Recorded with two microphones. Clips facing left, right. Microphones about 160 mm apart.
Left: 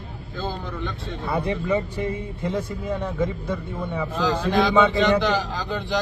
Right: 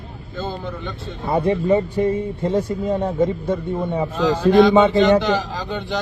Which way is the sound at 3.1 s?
35° right (ahead or behind).